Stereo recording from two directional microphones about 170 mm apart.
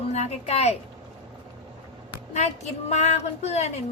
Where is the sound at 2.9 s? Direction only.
40° left (ahead or behind).